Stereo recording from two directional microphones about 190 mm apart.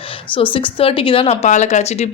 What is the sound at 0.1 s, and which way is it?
A woman's voice, 25° left (ahead or behind).